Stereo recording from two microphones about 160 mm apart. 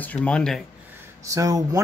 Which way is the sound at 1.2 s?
20° right (ahead or behind).